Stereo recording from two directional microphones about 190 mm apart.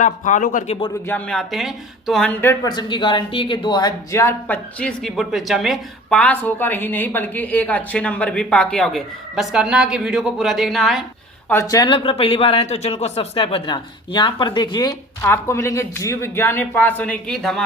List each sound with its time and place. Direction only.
0.0 s speech: 40° left (ahead or behind)
1.0 s speech: 5° left (ahead or behind)
2.4 s speech: 20° left (ahead or behind); by 11.0 s centre (ahead or behind)
11.4 s speech: 15° left (ahead or behind)